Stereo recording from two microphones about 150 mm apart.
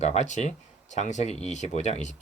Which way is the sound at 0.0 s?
50° left (ahead or behind).